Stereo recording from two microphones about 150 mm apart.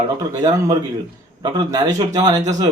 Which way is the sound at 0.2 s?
25° right (ahead or behind).